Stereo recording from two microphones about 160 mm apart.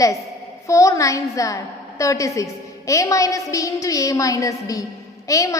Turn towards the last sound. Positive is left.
turn(degrees=20)  # may be behind; listen again after turning